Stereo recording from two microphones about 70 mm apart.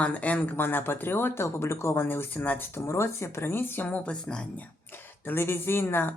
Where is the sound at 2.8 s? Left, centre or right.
Left; by 4.6 s centre.